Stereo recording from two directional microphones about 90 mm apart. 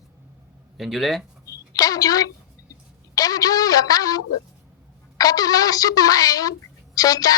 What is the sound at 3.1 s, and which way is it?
Speech, 45° left (ahead or behind).